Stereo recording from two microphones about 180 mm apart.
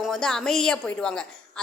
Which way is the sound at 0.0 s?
5° left (ahead or behind).